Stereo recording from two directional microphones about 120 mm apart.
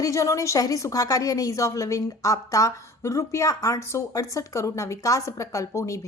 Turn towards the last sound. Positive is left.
turn(degrees=25)  # may be behind; listen again after turning